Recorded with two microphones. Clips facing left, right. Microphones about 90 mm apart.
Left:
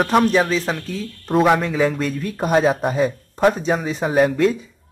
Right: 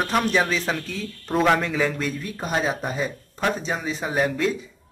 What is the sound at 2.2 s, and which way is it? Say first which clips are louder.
A man's voice: left 11 dB; 50° left (ahead or behind).